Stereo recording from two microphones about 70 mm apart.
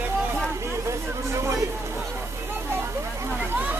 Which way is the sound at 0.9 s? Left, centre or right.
Right.